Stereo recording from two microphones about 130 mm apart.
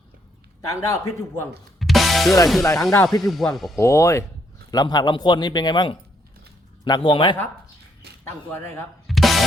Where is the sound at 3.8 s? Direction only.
20° left (ahead or behind); by 7.4 s 40° left (ahead or behind).